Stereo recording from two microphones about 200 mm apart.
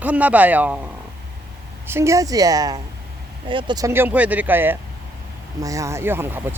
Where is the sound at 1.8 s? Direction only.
15° right (ahead or behind).